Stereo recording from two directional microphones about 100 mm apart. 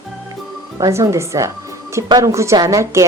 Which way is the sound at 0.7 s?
35° right (ahead or behind).